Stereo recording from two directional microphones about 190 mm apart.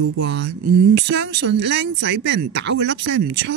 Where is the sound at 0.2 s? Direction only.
70° right (ahead or behind).